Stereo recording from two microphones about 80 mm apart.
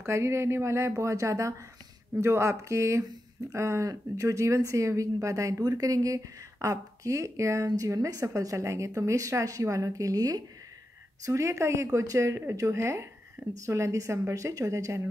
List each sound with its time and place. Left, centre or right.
0.0 s speech: right
11.2 s speech: right